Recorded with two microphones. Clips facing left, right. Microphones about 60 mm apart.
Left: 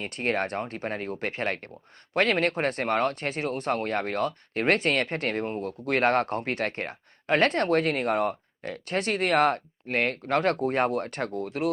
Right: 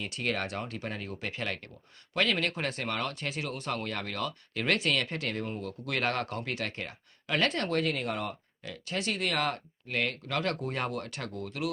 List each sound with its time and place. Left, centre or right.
0.0 s speech: left